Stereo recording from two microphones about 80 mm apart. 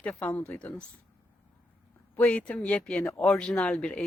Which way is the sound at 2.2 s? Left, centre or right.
Centre.